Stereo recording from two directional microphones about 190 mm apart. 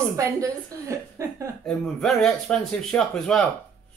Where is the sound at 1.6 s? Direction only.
5° left (ahead or behind).